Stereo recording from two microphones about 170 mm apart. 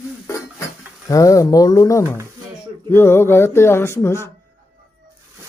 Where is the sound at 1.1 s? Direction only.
20° left (ahead or behind).